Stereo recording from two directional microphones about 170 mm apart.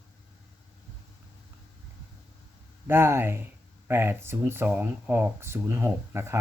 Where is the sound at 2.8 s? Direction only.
15° right (ahead or behind).